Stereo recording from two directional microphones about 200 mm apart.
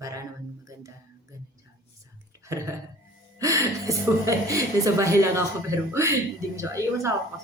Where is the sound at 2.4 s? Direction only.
15° right (ahead or behind).